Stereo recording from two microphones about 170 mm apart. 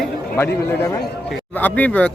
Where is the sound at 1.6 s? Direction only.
10° left (ahead or behind).